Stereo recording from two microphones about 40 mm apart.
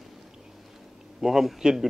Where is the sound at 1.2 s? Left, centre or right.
Centre.